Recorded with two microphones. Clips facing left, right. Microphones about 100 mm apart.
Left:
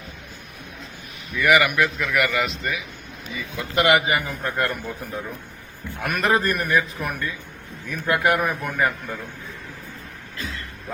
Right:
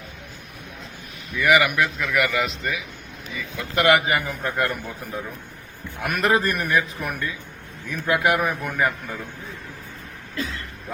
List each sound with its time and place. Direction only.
1.4 s a man's voice: 15° right (ahead or behind)
3.6 s a man's voice: 15° left (ahead or behind)
4.2 s a man's voice: 10° right (ahead or behind)
6.0 s a man's voice: 5° right (ahead or behind)